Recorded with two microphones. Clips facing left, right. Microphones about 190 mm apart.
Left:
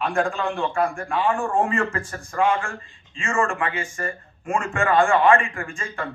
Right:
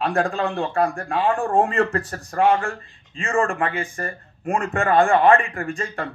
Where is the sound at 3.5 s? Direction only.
60° right (ahead or behind).